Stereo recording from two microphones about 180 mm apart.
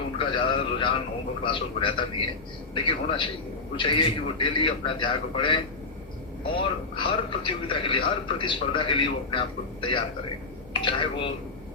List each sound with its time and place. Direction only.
0.2 s a man's voice: 25° left (ahead or behind)
6.6 s a man's voice: 30° left (ahead or behind)